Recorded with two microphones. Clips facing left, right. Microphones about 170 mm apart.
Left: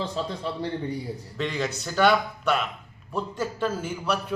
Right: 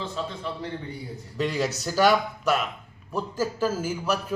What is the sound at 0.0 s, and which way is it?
Speech, 35° left (ahead or behind).